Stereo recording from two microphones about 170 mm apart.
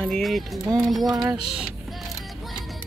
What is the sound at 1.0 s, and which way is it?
Music, 25° right (ahead or behind).